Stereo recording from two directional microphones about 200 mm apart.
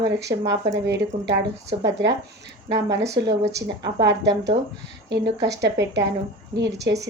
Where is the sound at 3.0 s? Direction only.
55° right (ahead or behind).